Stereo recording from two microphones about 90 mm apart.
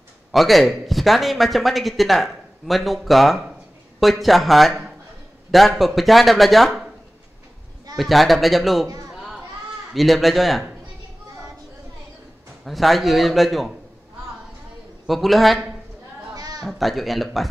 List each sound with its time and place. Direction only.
0.3 s a man's voice: centre (ahead or behind)
7.9 s a man's voice: centre (ahead or behind)
9.9 s a man's voice: centre (ahead or behind)
12.6 s a man's voice: centre (ahead or behind)
15.0 s a man's voice: centre (ahead or behind)
16.3 s a sound: 45° right (ahead or behind)
16.6 s a man's voice: centre (ahead or behind)